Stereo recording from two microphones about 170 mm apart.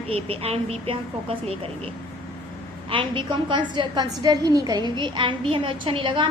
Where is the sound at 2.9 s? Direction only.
30° right (ahead or behind).